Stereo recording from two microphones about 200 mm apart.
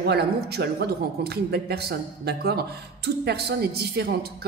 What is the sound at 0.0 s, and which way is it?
A woman's voice, 55° right (ahead or behind).